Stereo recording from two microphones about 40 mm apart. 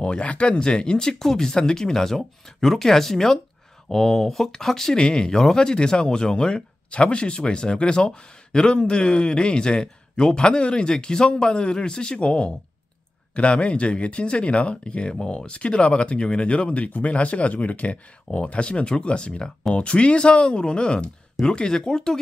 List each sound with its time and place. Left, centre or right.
0.0 s speech: left